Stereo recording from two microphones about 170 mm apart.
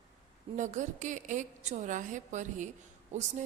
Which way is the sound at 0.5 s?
45° right (ahead or behind).